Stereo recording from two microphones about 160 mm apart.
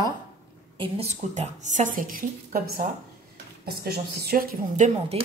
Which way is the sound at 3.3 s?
80° right.